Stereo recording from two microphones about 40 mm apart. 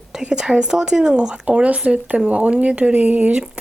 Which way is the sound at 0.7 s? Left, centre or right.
Centre.